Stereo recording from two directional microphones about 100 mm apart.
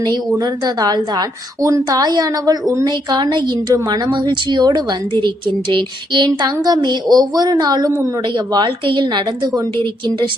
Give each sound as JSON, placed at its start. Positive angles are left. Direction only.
{"t": 0.0, "sound": "a woman's voice", "side_deg": -40}